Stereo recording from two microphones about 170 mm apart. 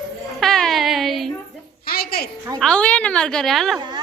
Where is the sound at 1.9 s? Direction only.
65° left (ahead or behind).